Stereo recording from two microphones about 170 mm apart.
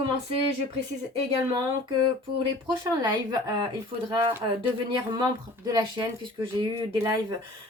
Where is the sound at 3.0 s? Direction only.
25° right (ahead or behind).